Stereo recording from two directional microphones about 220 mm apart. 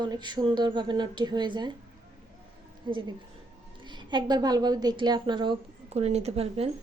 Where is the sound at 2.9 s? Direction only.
20° right (ahead or behind).